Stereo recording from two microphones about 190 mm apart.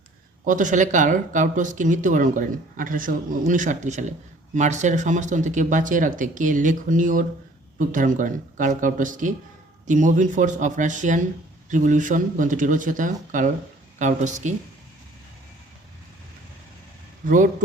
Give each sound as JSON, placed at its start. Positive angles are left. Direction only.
{"t": 0.4, "sound": "speech", "side_deg": -45}
{"t": 17.2, "sound": "speech", "side_deg": -45}